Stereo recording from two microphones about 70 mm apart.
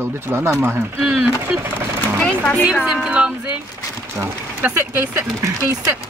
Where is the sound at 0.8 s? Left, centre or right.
Centre.